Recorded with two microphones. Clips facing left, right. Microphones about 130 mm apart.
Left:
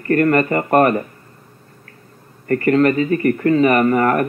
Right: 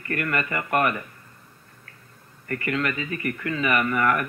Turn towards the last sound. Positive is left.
turn(degrees=40)  # may be behind; listen again after turning